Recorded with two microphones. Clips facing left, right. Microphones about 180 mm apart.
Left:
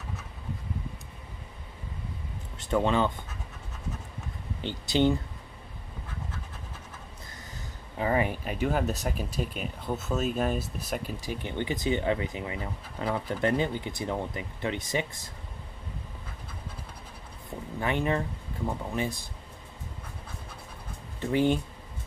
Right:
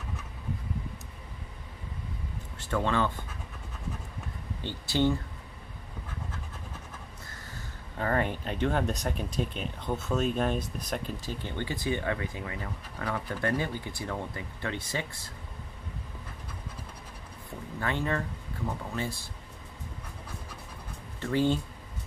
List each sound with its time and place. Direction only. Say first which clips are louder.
2.5 s speech: left 3 dB; 20° left (ahead or behind)
4.6 s speech: left 2 dB; 15° left (ahead or behind)
8.0 s speech: left 2 dB; 10° left (ahead or behind)
17.7 s speech: left 3 dB; 15° left (ahead or behind)
21.2 s speech: left 2 dB; 15° left (ahead or behind)